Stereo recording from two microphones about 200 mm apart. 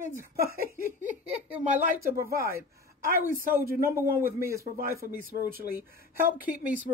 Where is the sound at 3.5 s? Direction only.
15° right (ahead or behind).